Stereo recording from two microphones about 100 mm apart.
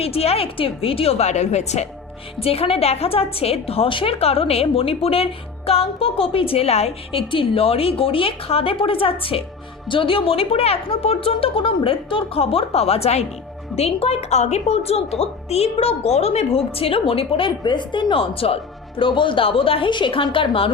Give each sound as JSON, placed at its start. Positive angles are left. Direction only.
{"t": 0.0, "sound": "a woman's voice", "side_deg": 85}
{"t": 2.4, "sound": "a woman's voice", "side_deg": 75}
{"t": 17.6, "sound": "speech", "side_deg": 50}